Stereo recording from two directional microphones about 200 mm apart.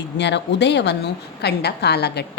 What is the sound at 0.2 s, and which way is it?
A woman's voice, 60° left (ahead or behind).